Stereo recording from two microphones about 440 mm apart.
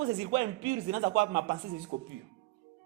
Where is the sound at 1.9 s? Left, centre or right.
Centre.